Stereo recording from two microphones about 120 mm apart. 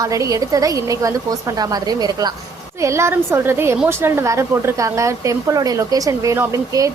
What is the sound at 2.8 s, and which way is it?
A woman's voice, 25° right (ahead or behind).